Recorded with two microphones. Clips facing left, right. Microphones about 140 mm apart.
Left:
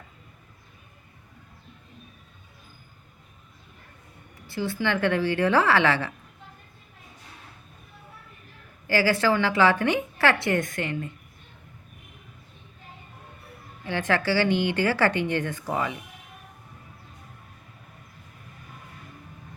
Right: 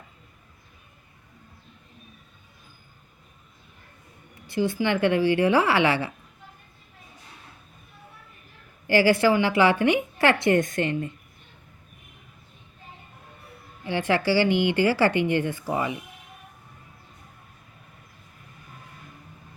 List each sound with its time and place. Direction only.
4.4 s a woman's voice: 15° right (ahead or behind)
8.9 s a woman's voice: 15° right (ahead or behind)
13.8 s a woman's voice: 15° right (ahead or behind)